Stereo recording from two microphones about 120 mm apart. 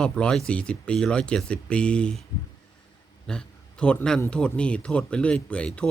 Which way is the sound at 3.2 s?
5° left (ahead or behind).